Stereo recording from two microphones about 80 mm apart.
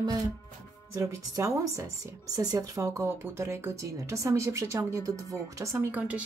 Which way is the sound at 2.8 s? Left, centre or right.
Right.